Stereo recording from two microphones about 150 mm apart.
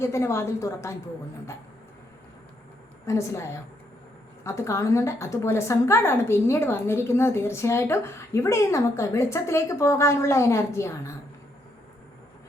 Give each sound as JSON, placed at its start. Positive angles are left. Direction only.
{"t": 0.0, "sound": "a woman's voice", "side_deg": 20}
{"t": 3.1, "sound": "a woman's voice", "side_deg": 20}